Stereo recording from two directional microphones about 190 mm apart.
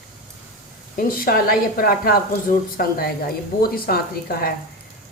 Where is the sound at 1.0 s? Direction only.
50° left (ahead or behind).